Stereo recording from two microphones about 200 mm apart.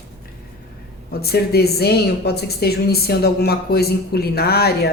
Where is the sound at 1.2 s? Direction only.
50° left (ahead or behind).